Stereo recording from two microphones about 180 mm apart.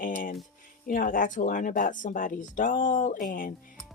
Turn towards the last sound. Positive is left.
turn(degrees=50)  # may be behind; listen again after turning